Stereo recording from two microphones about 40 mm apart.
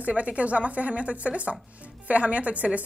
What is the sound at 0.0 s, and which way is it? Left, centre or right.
A woman's voice, right.